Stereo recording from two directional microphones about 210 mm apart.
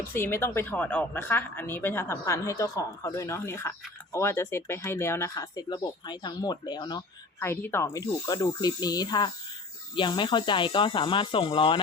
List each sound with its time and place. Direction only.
0.1 s a woman's voice: 10° left (ahead or behind)